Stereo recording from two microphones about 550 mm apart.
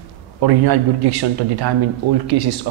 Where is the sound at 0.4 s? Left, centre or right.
Right.